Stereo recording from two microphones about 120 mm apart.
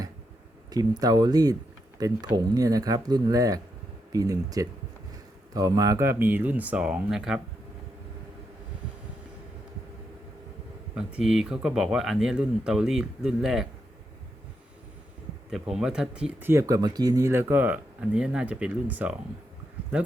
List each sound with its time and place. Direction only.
0.7 s speech: 30° right (ahead or behind); by 7.4 s 5° right (ahead or behind)
10.9 s speech: 5° right (ahead or behind)
15.4 s speech: 5° right (ahead or behind)
16.5 s speech: 25° right (ahead or behind)